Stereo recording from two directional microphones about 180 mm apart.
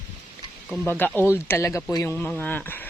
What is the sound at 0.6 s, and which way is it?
Speech, 5° left (ahead or behind).